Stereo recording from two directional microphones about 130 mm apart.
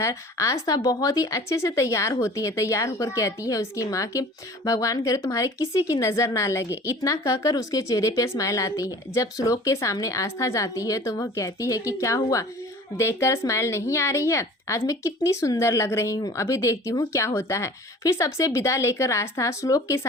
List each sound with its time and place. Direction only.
0.0 s speech: 25° left (ahead or behind)